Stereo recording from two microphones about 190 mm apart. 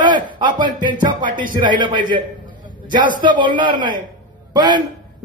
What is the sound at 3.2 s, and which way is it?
A man's voice, 25° right (ahead or behind).